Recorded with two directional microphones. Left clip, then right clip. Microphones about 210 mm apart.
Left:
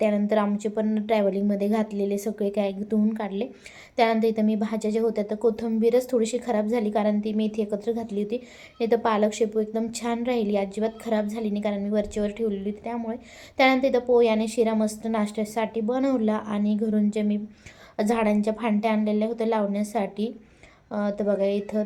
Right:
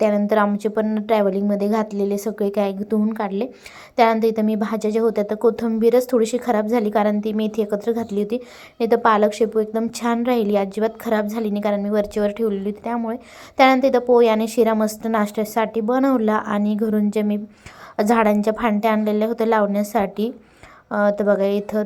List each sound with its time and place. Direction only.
0.0 s a woman's voice: 20° right (ahead or behind)